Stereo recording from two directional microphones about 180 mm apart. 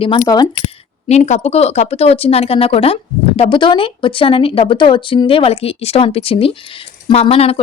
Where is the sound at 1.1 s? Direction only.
40° left (ahead or behind).